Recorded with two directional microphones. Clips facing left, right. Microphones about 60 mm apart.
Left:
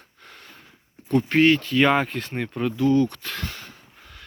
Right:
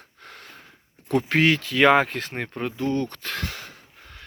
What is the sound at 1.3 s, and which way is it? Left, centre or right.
Speech, right.